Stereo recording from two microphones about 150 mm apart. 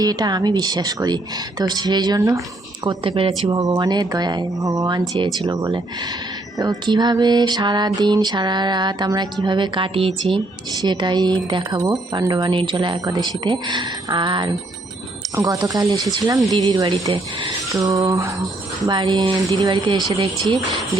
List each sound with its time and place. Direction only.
0.0 s music: 25° right (ahead or behind)
2.8 s music: 35° right (ahead or behind)
12.1 s speech: 30° right (ahead or behind)
15.4 s music: 25° right (ahead or behind)